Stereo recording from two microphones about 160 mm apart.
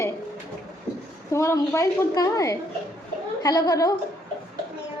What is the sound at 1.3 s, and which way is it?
Speech, 15° left (ahead or behind).